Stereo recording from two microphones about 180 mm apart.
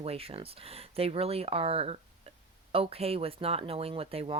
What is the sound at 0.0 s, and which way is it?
Speech, 35° right (ahead or behind).